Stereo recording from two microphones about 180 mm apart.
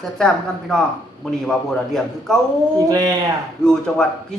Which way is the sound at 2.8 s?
20° right (ahead or behind).